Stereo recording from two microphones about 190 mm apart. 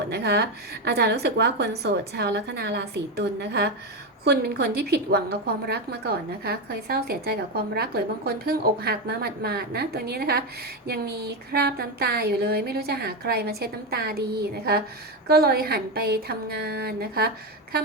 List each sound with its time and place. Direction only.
0.1 s a woman's voice: 60° right (ahead or behind)